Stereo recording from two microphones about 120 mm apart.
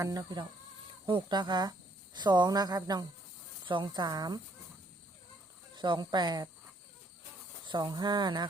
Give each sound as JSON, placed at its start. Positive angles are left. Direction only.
{"t": 0.0, "sound": "a woman's voice", "side_deg": -30}
{"t": 5.7, "sound": "a woman's voice", "side_deg": -40}
{"t": 7.7, "sound": "a woman's voice", "side_deg": -40}